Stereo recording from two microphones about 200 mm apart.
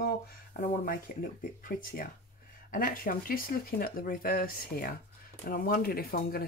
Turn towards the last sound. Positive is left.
turn(degrees=50)  # may be behind; listen again after turning